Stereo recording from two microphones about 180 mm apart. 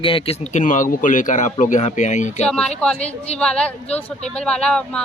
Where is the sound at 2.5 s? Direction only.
5° left (ahead or behind).